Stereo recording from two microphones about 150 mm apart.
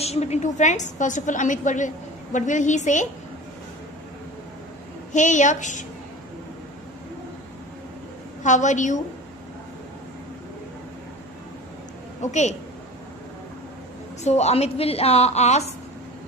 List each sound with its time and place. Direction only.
0.0 s a woman's voice: 45° left (ahead or behind)
5.1 s a woman's voice: 55° left (ahead or behind)
8.5 s a woman's voice: 55° left (ahead or behind)
12.2 s a woman's voice: 50° left (ahead or behind)
14.2 s a woman's voice: 45° left (ahead or behind)